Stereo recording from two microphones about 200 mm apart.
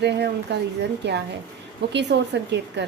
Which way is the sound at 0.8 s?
60° right (ahead or behind).